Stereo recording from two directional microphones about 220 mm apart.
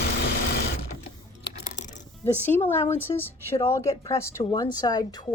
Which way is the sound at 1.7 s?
35° left (ahead or behind).